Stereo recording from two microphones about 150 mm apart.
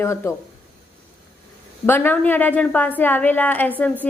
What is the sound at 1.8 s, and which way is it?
A woman's voice, 15° left (ahead or behind).